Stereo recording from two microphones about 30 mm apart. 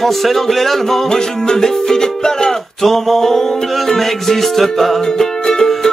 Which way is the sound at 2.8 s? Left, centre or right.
Centre.